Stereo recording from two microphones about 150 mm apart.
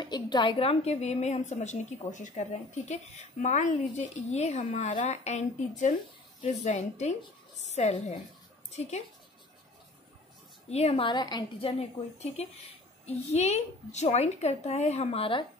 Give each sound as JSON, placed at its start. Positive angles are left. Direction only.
{"t": 0.0, "sound": "a woman's voice", "side_deg": 30}
{"t": 10.7, "sound": "a woman's voice", "side_deg": 45}
{"t": 13.0, "sound": "a woman's voice", "side_deg": 45}